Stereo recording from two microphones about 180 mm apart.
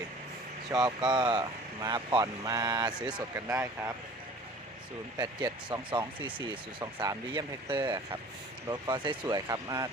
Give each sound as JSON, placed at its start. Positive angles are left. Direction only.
{"t": 0.7, "sound": "speech", "side_deg": -20}
{"t": 5.1, "sound": "speech", "side_deg": -20}
{"t": 6.0, "sound": "speech", "side_deg": -10}